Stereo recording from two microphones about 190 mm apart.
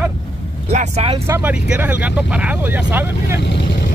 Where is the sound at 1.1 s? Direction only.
15° right (ahead or behind).